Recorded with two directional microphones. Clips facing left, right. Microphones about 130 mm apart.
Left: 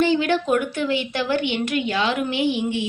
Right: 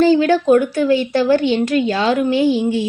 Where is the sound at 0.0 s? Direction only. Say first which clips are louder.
Right 7 dB; 40° right (ahead or behind).